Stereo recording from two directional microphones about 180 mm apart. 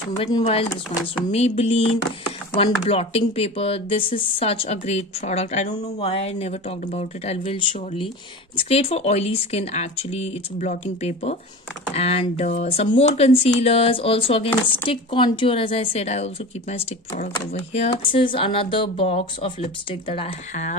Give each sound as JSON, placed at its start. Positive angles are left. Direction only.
{"t": 0.2, "sound": "speech", "side_deg": 30}